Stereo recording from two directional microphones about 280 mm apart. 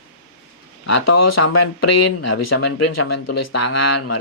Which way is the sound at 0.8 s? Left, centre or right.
Left.